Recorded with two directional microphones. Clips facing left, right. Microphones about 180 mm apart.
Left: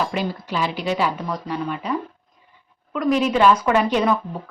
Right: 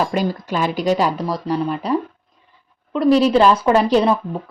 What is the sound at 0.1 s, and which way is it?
Speech, 45° right (ahead or behind).